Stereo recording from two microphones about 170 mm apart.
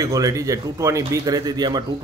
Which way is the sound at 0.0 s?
20° right (ahead or behind).